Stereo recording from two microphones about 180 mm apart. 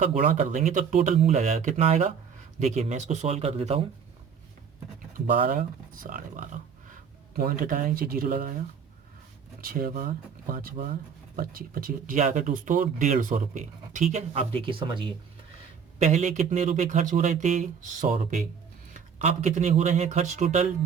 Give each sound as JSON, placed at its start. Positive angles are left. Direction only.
{"t": 0.2, "sound": "speech", "side_deg": -45}
{"t": 5.2, "sound": "speech", "side_deg": -50}
{"t": 9.6, "sound": "speech", "side_deg": -55}
{"t": 14.6, "sound": "speech", "side_deg": -30}
{"t": 16.0, "sound": "speech", "side_deg": -40}